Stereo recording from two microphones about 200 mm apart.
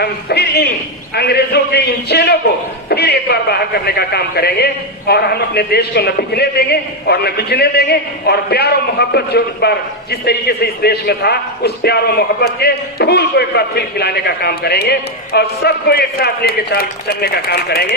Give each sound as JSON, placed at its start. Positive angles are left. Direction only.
{"t": 0.0, "sound": "a man's voice", "side_deg": 55}